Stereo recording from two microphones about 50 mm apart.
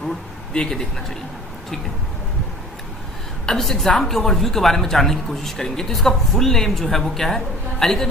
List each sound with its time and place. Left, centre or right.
0.5 s speech: centre
3.4 s a woman's voice: centre